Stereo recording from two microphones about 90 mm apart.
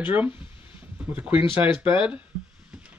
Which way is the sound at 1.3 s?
75° left (ahead or behind).